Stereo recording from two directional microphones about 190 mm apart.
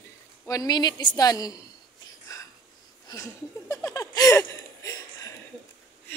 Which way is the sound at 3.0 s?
15° left (ahead or behind).